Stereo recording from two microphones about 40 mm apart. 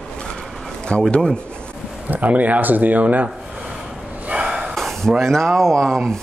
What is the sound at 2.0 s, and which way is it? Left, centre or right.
Speech, right.